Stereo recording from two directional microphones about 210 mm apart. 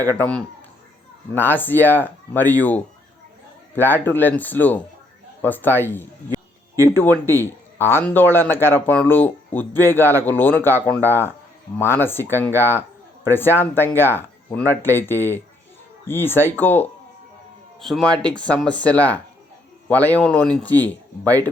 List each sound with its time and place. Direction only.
0.2 s speech: 5° left (ahead or behind)
6.7 s speech: 15° right (ahead or behind)
7.0 s speech: 10° left (ahead or behind)